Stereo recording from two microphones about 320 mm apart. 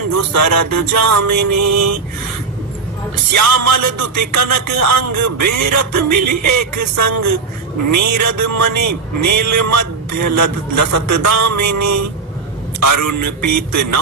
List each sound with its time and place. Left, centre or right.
0.1 s a man's voice: right
3.3 s a man's voice: right